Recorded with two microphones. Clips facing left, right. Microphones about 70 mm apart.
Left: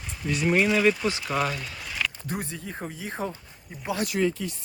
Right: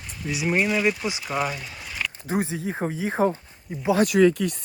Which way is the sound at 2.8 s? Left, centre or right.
Right.